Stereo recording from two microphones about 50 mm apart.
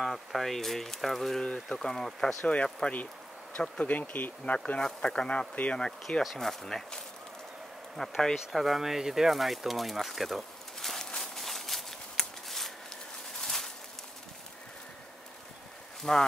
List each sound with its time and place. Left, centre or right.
0.0 s speech: centre
1.4 s speech: centre
1.8 s speech: centre
2.4 s speech: left
3.8 s speech: left
4.8 s speech: centre
11.1 s a sound: centre
16.0 s speech: centre